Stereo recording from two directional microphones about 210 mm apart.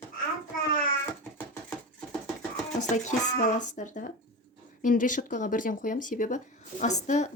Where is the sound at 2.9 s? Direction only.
35° left (ahead or behind).